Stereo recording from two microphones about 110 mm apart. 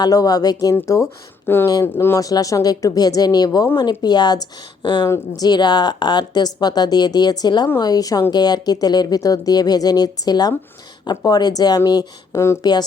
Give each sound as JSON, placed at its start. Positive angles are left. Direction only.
{"t": 0.0, "sound": "speech", "side_deg": 35}
{"t": 1.5, "sound": "a woman's voice", "side_deg": 20}
{"t": 5.0, "sound": "a woman's voice", "side_deg": 25}
{"t": 5.5, "sound": "speech", "side_deg": 40}